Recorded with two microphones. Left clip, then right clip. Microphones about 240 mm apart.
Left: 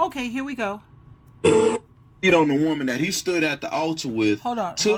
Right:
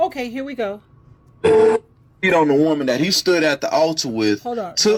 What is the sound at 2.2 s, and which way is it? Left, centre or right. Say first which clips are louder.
Speech: right 4 dB; centre.